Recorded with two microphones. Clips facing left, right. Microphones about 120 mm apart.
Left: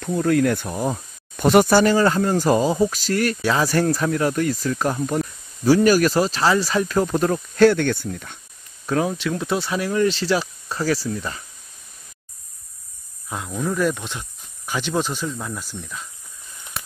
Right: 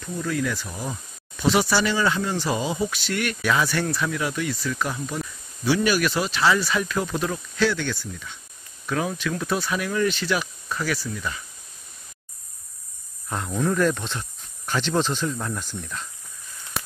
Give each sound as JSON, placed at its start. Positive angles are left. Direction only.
{"t": 0.0, "sound": "speech", "side_deg": 60}
{"t": 8.8, "sound": "speech", "side_deg": 25}
{"t": 13.3, "sound": "speech", "side_deg": 5}